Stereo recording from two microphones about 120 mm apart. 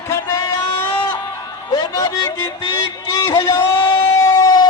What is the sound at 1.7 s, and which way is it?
A man's voice, 35° left (ahead or behind).